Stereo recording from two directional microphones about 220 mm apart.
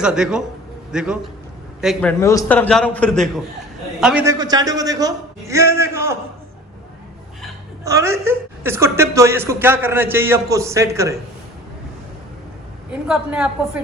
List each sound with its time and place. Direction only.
0.0 s a man's voice: 5° right (ahead or behind)
4.3 s a woman's voice: 15° right (ahead or behind)
7.9 s a woman's voice: 15° right (ahead or behind)
12.9 s a man's voice: 5° right (ahead or behind)